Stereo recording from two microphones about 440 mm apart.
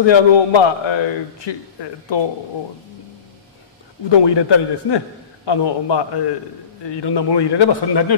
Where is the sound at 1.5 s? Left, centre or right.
Left.